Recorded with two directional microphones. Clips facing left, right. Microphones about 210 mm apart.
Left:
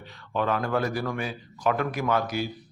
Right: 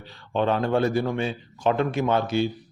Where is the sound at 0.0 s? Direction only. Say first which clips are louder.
Right 4 dB; 30° right (ahead or behind).